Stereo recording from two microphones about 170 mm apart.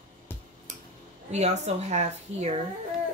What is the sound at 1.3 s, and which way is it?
Speech, 40° right (ahead or behind).